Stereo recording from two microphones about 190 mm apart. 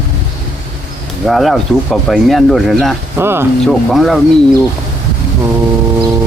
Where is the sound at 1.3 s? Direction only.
Centre (ahead or behind).